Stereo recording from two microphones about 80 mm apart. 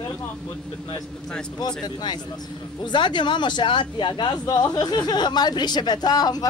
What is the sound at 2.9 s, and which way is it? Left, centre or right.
Speech, left.